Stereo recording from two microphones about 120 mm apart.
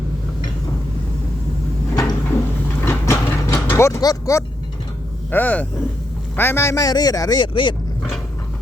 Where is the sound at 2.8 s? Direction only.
20° left (ahead or behind).